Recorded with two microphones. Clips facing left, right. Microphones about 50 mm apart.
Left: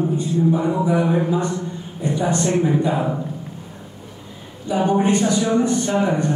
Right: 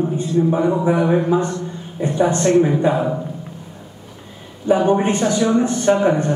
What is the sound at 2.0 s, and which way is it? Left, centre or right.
Speech, right.